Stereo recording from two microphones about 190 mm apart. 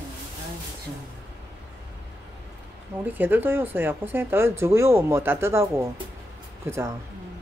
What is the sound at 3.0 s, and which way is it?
Speech, 10° right (ahead or behind).